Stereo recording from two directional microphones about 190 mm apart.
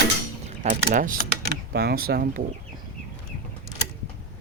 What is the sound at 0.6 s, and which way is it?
Speech, 40° right (ahead or behind).